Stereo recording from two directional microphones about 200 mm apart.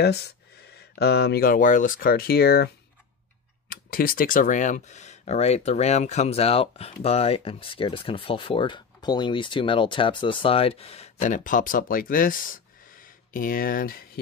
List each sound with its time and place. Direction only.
0.0 s speech: 55° left (ahead or behind)